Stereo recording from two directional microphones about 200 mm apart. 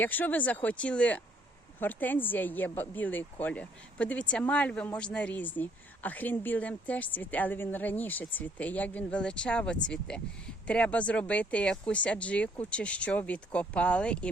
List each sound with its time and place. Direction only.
0.0 s speech: 10° left (ahead or behind)